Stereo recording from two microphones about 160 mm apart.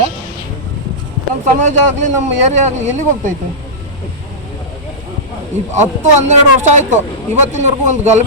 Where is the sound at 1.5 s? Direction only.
50° right (ahead or behind).